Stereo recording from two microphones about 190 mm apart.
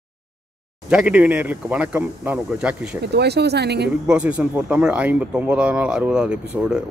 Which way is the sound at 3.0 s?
60° right (ahead or behind).